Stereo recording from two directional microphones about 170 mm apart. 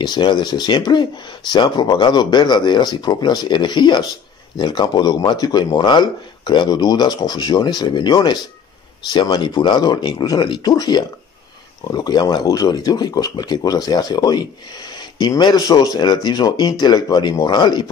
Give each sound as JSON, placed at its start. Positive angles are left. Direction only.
{"t": 0.0, "sound": "speech", "side_deg": 25}